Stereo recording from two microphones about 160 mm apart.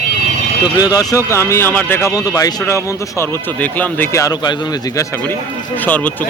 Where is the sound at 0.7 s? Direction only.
25° left (ahead or behind).